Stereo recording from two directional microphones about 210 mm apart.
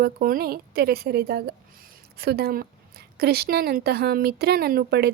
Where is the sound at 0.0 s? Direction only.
45° right (ahead or behind).